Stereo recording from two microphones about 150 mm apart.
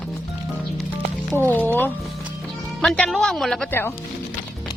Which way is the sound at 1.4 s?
10° left (ahead or behind).